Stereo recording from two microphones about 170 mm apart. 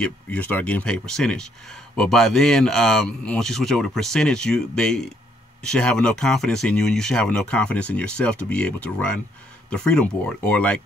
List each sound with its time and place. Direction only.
0.0 s speech: 10° left (ahead or behind)